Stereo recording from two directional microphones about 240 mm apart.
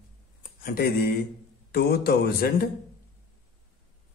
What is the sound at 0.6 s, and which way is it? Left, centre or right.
A man's voice, left.